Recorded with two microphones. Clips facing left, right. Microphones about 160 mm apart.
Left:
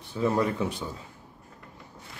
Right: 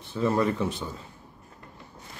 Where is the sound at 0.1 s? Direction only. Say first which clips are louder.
Right 1 dB; 10° left (ahead or behind).